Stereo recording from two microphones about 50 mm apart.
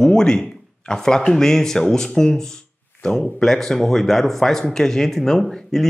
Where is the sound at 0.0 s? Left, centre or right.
Centre.